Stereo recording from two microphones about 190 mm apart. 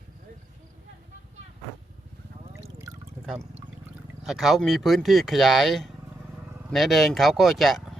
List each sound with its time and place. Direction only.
2.7 s pour: 20° right (ahead or behind)
4.2 s speech: centre (ahead or behind)